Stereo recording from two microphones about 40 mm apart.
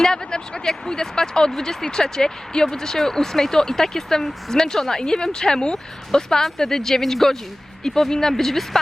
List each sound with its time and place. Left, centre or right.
0.0 s speech: centre